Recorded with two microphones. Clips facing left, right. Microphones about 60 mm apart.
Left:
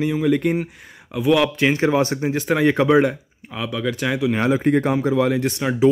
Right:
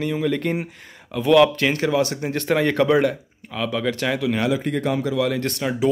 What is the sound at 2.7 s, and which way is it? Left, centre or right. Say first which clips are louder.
Speech: left 2 dB; centre.